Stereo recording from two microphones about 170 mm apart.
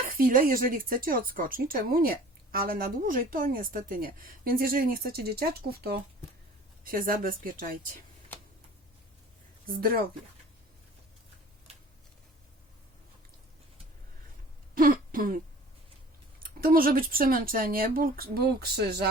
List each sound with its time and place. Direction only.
0.1 s speech: 55° right (ahead or behind)
9.6 s speech: 55° right (ahead or behind)
11.7 s a sound: 35° right (ahead or behind)
14.8 s throat clearing: 55° right (ahead or behind)
16.4 s speech: 55° right (ahead or behind)